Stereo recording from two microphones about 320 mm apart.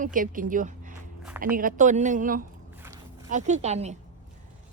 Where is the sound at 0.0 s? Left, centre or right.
Right.